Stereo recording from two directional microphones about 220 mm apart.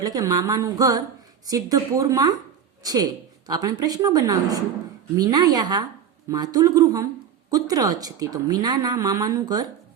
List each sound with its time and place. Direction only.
0.0 s a woman's voice: 15° right (ahead or behind)